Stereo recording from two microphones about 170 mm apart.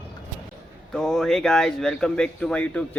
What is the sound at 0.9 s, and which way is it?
Speech, 5° left (ahead or behind).